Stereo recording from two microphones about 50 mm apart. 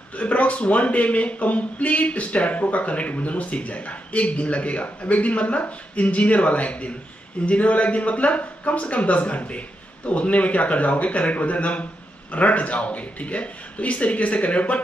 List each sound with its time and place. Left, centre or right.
0.1 s speech: left